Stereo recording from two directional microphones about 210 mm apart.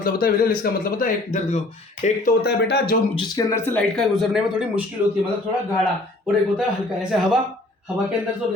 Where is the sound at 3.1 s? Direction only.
15° left (ahead or behind).